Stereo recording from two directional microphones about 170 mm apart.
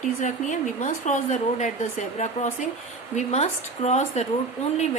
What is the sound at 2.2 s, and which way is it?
A woman's voice, 40° left (ahead or behind).